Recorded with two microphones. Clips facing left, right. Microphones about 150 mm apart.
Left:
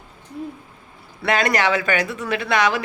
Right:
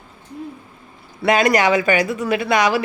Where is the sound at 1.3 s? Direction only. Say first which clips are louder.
Right 4 dB; 15° right (ahead or behind).